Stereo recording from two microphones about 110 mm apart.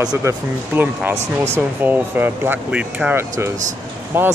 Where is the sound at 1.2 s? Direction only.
90° right.